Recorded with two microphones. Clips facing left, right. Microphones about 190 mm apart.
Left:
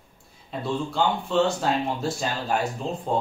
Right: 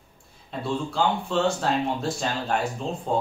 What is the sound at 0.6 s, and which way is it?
Speech, centre (ahead or behind).